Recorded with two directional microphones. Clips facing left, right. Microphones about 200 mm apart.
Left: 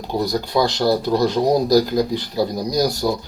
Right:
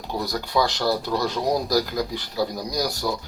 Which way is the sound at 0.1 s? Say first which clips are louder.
Left 5 dB; 20° left (ahead or behind).